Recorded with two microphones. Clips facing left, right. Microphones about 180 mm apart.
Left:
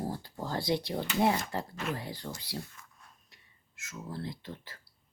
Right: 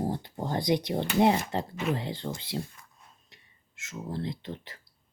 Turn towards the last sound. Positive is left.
turn(degrees=-25)  # may be behind; listen again after turning